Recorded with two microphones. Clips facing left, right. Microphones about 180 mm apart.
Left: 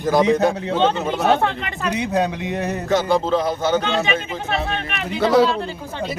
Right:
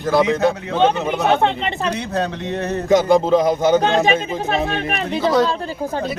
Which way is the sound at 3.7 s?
40° right (ahead or behind).